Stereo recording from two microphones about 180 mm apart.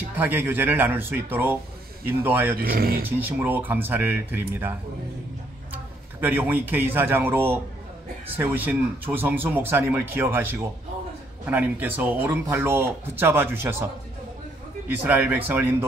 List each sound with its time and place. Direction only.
0.2 s speech: 10° right (ahead or behind)
2.5 s speech: 55° right (ahead or behind)
3.2 s speech: 10° right (ahead or behind)
6.2 s speech: 10° right (ahead or behind)
14.9 s speech: 10° right (ahead or behind)